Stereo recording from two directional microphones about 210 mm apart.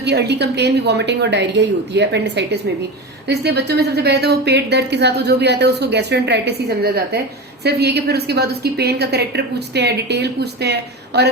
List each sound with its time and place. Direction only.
0.0 s a woman's voice: 55° right (ahead or behind)